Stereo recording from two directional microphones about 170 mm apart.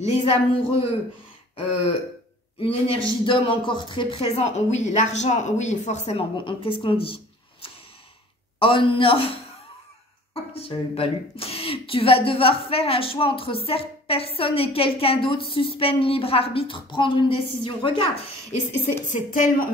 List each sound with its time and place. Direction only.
0.0 s a woman's voice: 35° left (ahead or behind)
2.6 s a woman's voice: 30° left (ahead or behind)
8.5 s a woman's voice: 30° left (ahead or behind)
10.3 s a woman's voice: 35° left (ahead or behind)
18.7 s speech: 50° left (ahead or behind)